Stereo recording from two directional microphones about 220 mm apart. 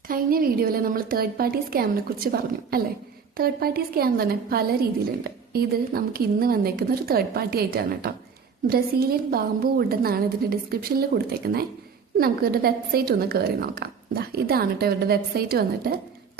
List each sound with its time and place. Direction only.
0.1 s a woman's voice: 40° right (ahead or behind)